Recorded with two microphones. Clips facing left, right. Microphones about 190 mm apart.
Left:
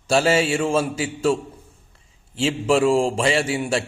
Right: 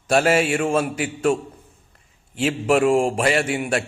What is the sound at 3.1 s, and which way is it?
Speech, 25° left (ahead or behind).